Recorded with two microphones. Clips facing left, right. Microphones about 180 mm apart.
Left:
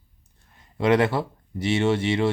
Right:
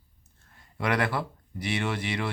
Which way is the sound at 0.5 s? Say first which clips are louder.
Left 8 dB; 20° left (ahead or behind).